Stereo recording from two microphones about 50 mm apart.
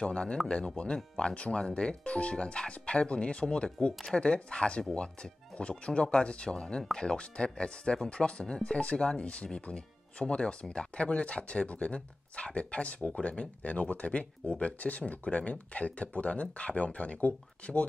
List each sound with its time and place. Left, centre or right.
0.0 s speech: centre